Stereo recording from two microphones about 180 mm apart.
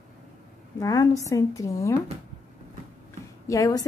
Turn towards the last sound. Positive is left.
turn(degrees=20)  # may be behind; listen again after turning